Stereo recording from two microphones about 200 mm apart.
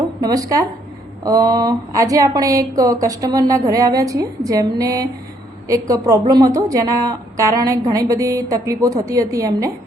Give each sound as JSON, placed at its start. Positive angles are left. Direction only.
{"t": 0.2, "sound": "a woman's voice", "side_deg": -15}